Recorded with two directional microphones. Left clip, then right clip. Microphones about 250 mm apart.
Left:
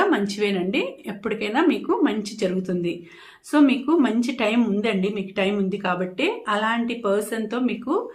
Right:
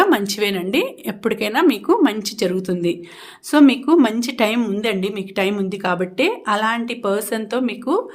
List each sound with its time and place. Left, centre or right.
0.0 s speech: right